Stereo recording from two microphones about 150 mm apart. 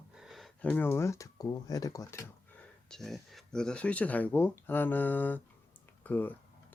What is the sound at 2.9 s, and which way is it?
Speech, centre (ahead or behind).